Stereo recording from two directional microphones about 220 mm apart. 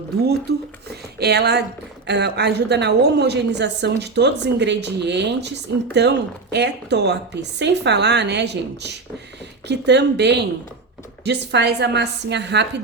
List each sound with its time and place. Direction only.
0.5 s a woman's voice: 45° right (ahead or behind)